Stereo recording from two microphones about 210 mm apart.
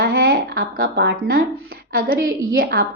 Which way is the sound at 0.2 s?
45° right (ahead or behind).